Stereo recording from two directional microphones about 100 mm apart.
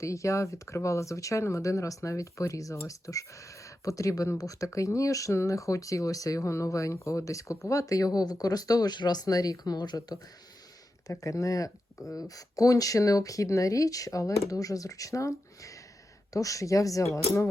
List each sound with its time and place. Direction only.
0.0 s speech: 30° left (ahead or behind)
11.1 s speech: 30° left (ahead or behind)